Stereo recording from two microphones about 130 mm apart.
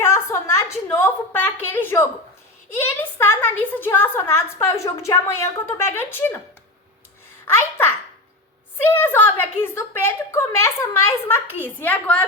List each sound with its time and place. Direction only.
0.0 s a sound: 20° left (ahead or behind)
2.8 s a woman's voice: 15° left (ahead or behind)
7.4 s a child's voice: 15° left (ahead or behind)